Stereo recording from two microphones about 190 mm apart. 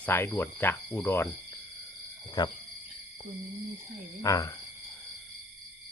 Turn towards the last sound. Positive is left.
turn(degrees=15)  # may be behind; listen again after turning